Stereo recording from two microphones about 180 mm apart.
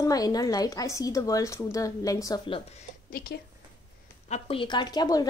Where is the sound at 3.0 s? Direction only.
55° left (ahead or behind).